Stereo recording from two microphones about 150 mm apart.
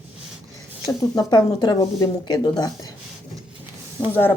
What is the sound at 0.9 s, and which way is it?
Speech, 25° left (ahead or behind).